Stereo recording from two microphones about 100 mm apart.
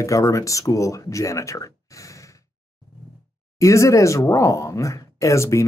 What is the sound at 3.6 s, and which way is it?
A man's voice, 30° left (ahead or behind).